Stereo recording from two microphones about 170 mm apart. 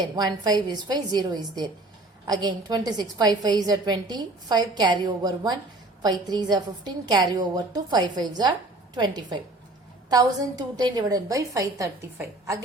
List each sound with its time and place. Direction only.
0.2 s a woman's voice: 25° right (ahead or behind)